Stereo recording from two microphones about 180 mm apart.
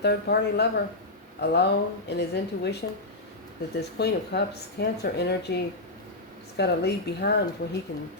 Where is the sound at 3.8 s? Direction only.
65° left (ahead or behind).